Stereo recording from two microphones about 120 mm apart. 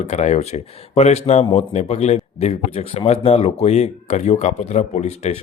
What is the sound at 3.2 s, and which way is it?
Speech, 65° left (ahead or behind).